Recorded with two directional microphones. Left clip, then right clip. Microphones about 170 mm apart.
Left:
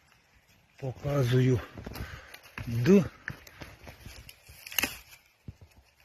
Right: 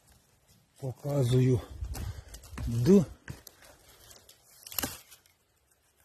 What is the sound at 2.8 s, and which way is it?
Speech, 20° right (ahead or behind).